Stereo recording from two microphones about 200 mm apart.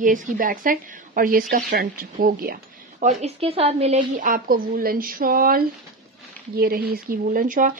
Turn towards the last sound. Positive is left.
turn(degrees=-40)  # may be behind; listen again after turning